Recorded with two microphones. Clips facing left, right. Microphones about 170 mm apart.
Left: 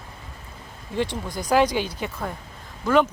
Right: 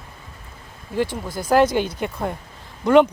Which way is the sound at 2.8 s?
20° right (ahead or behind).